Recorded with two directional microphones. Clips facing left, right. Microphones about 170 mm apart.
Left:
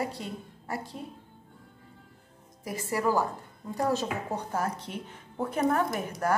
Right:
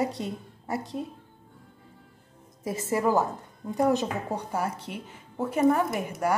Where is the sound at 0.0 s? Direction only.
20° right (ahead or behind).